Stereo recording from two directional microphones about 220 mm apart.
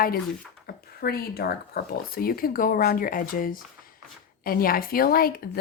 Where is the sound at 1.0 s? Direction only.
45° left (ahead or behind).